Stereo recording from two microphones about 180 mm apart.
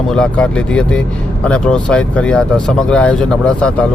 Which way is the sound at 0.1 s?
5° left (ahead or behind).